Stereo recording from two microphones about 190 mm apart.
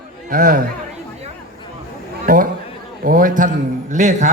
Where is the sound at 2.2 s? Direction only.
45° right (ahead or behind).